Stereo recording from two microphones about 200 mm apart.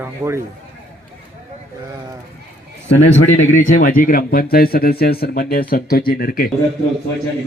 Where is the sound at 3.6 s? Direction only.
40° left (ahead or behind).